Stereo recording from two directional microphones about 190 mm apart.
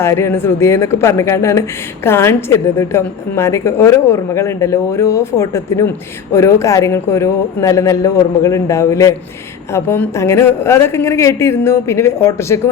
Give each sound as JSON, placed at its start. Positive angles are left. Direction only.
{"t": 0.0, "sound": "a woman's voice", "side_deg": 15}